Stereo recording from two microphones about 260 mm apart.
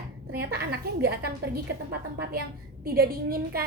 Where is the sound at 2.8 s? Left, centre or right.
Right.